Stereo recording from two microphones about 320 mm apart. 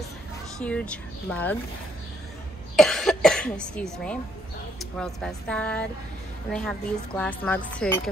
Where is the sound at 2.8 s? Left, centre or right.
Centre.